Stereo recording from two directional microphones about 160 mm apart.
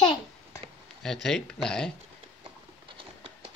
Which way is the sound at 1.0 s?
5° left (ahead or behind).